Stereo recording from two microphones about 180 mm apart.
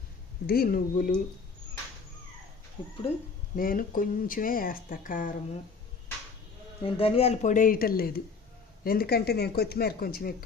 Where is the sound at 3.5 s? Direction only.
50° left (ahead or behind).